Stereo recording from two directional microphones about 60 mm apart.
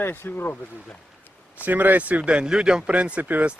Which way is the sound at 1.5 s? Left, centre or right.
Right.